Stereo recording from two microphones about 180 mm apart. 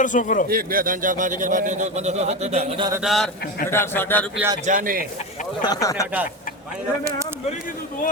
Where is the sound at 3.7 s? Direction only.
10° left (ahead or behind).